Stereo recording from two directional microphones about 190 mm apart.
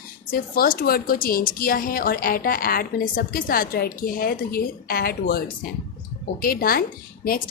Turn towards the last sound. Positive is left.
turn(degrees=50)  # may be behind; listen again after turning